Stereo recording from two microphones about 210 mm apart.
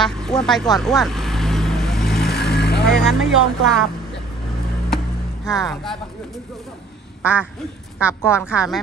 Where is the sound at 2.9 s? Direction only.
Centre (ahead or behind).